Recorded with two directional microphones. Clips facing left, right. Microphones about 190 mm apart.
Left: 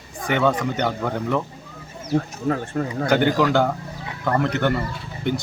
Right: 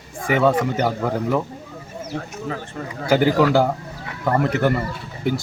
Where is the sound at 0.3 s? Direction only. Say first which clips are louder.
Right 3 dB; 5° right (ahead or behind).